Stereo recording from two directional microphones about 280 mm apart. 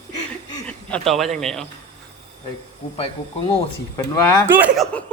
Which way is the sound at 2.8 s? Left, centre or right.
Left.